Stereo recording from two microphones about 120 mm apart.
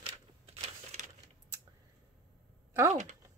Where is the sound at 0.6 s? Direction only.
85° right.